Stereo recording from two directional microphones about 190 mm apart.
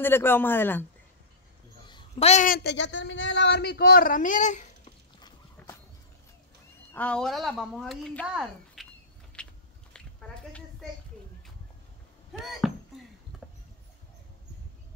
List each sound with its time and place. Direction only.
0.0 s speech: 10° left (ahead or behind)
1.9 s speech: 30° left (ahead or behind)
6.9 s speech: 5° left (ahead or behind)
9.4 s biting: 5° left (ahead or behind)
9.9 s a sound: 5° left (ahead or behind)
12.4 s a sound: centre (ahead or behind)